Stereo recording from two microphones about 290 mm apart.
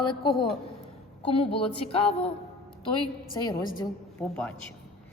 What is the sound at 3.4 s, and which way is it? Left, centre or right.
Speech, centre.